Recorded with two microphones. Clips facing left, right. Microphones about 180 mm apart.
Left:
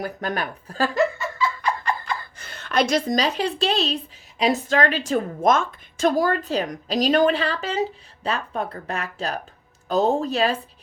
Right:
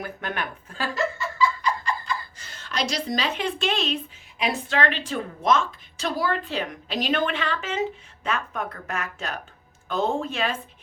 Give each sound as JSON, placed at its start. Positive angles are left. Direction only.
{"t": 0.0, "sound": "a woman's voice", "side_deg": 40}
{"t": 0.9, "sound": "a woman's voice", "side_deg": 60}